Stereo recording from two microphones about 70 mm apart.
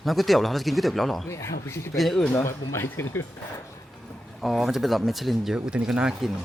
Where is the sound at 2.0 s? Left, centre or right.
Centre.